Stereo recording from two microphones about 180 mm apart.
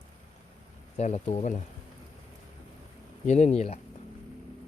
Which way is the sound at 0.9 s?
40° left (ahead or behind).